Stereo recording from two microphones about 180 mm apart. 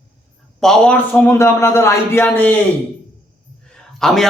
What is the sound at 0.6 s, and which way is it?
A man's voice, 5° left (ahead or behind).